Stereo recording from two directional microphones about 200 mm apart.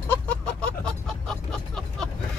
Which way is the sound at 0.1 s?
5° left (ahead or behind).